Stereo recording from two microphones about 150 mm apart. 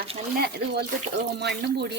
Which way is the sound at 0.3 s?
90° right.